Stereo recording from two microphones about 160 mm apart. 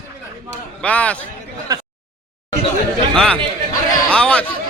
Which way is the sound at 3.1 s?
5° left (ahead or behind).